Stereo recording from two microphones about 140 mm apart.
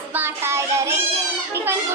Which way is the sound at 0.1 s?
15° right (ahead or behind).